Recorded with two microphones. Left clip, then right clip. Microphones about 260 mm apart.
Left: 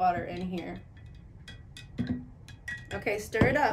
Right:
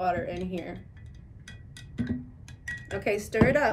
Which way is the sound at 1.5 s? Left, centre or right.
Centre.